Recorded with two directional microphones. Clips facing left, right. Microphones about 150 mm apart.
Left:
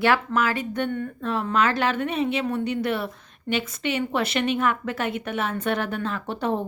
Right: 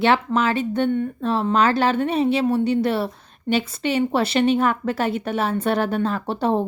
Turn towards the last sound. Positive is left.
turn(degrees=-30)  # may be behind; listen again after turning